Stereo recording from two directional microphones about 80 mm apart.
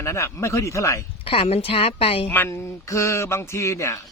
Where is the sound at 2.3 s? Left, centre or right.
Left.